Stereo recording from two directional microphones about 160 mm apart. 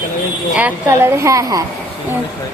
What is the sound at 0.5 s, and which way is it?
A woman's voice, 15° right (ahead or behind).